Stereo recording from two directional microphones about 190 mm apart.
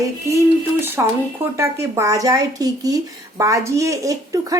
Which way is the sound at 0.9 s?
15° right (ahead or behind).